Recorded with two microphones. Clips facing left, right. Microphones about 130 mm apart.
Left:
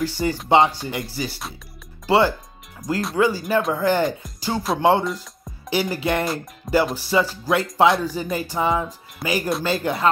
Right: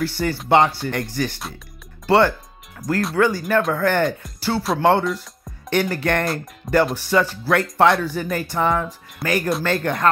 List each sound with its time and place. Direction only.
0.0 s speech: 15° left (ahead or behind)
6.8 s speech: 10° left (ahead or behind)